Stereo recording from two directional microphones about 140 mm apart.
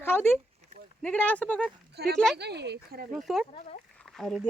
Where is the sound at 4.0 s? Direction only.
5° left (ahead or behind).